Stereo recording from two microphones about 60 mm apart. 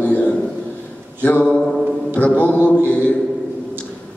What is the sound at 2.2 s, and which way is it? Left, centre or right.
Speech, left.